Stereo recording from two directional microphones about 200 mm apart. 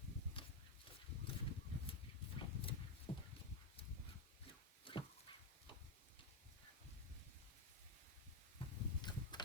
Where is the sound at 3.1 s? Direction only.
25° left (ahead or behind).